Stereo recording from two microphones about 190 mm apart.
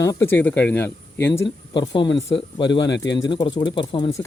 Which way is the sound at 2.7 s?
65° left (ahead or behind).